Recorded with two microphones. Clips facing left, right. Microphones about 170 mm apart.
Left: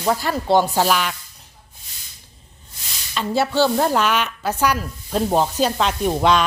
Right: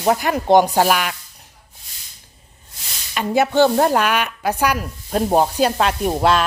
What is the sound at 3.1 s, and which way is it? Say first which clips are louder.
Speech: right 3 dB; 15° right (ahead or behind).